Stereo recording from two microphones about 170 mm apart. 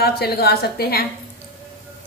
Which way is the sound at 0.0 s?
65° left (ahead or behind).